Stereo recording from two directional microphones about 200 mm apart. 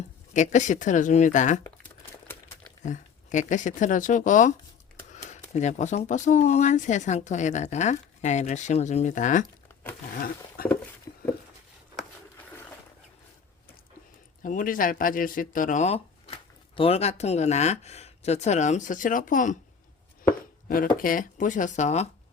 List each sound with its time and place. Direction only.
0.3 s speech: 35° left (ahead or behind)
2.8 s speech: 40° left (ahead or behind)
10.6 s a sound: 45° left (ahead or behind)
11.1 s patter: 15° left (ahead or behind)
14.4 s speech: 40° left (ahead or behind)
20.7 s speech: 45° left (ahead or behind)